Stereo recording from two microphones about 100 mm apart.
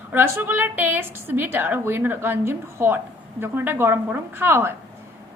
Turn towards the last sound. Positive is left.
turn(degrees=-25)  # may be behind; listen again after turning